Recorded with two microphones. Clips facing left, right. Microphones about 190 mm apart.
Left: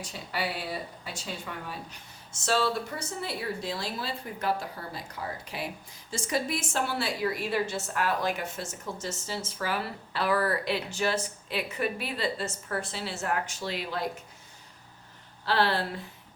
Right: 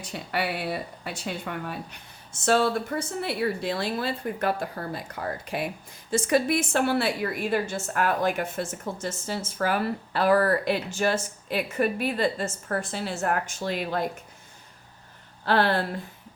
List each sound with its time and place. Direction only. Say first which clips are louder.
0.0 s a woman's voice: right 4 dB; 60° right (ahead or behind)
15.4 s a woman's voice: right 4 dB; 50° right (ahead or behind)